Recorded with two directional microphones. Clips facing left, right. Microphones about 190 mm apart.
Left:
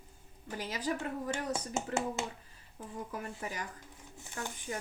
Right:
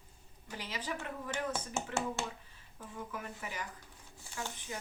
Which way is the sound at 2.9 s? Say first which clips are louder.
Left 2 dB; 35° left (ahead or behind).